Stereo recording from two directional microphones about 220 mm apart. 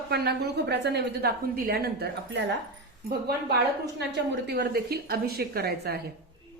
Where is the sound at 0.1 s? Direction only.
50° right (ahead or behind).